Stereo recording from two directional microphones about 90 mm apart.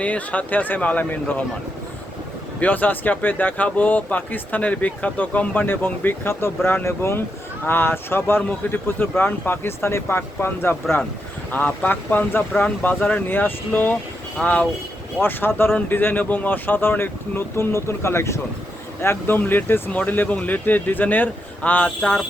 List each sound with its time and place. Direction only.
0.0 s speech: 15° left (ahead or behind)
2.6 s speech: 20° left (ahead or behind)
8.4 s speech: 15° left (ahead or behind)